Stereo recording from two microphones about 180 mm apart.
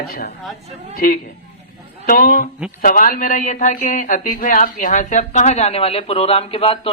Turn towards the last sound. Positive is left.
turn(degrees=30)  # may be behind; listen again after turning